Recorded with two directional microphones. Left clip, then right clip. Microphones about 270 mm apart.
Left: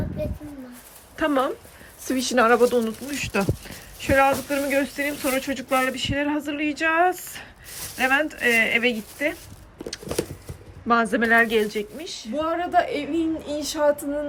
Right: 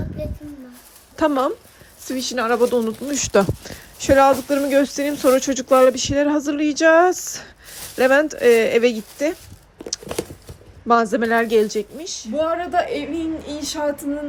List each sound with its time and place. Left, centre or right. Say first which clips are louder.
1.1 s a woman's voice: right 4 dB; centre
4.0 s speech: right 5 dB; right
10.8 s a woman's voice: right 3 dB; centre
12.3 s a woman's voice: right 2 dB; centre